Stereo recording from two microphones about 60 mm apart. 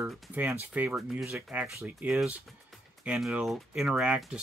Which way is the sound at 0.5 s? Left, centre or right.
Right.